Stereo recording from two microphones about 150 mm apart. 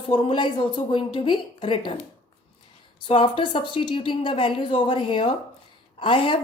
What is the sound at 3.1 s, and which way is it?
A woman's voice, 35° left (ahead or behind).